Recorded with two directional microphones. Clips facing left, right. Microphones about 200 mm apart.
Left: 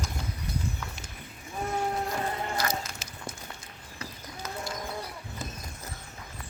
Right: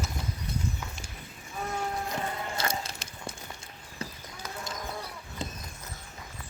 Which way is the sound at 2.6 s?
30° right (ahead or behind).